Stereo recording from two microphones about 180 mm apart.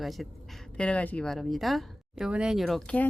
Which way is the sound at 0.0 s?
Centre (ahead or behind).